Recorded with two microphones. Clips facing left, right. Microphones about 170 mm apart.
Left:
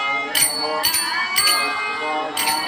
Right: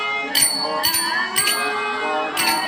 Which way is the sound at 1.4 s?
60° right (ahead or behind).